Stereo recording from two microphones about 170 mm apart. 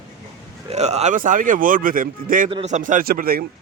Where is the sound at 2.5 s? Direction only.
35° right (ahead or behind); by 3.4 s 60° right (ahead or behind).